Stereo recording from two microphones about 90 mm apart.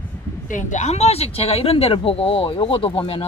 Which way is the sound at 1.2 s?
90° left.